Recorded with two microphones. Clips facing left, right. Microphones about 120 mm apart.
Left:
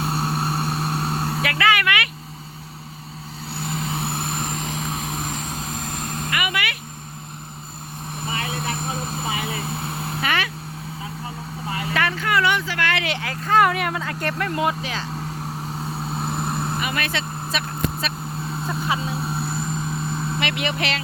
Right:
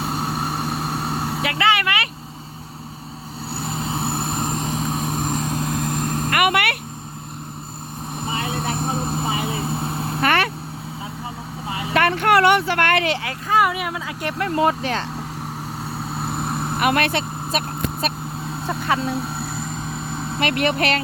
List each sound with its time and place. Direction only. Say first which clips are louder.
0.0 s vehicle: even; 15° right (ahead or behind)
1.5 s vehicle: right 1 dB; 25° right (ahead or behind)
3.6 s vehicle: right 1 dB; 30° right (ahead or behind)
6.4 s a sound: right 10 dB; 60° right (ahead or behind)
8.3 s vehicle: right 2 dB; 30° right (ahead or behind)
10.2 s vehicle: right 6 dB; 55° right (ahead or behind)
11.7 s vehicle: even; 15° right (ahead or behind)
11.9 s a sound: right 6 dB; 60° right (ahead or behind)
13.1 s vehicle: right 4 dB; 25° right (ahead or behind)
13.5 s a sound: left 1 dB; 5° right (ahead or behind)
14.3 s speech: right 6 dB; 25° right (ahead or behind); by 15.0 s 50° right (ahead or behind)
16.2 s vehicle: right 1 dB; 5° right (ahead or behind)
16.7 s speech: right 7 dB; 65° right (ahead or behind)
20.4 s speech: right 8 dB; 50° right (ahead or behind)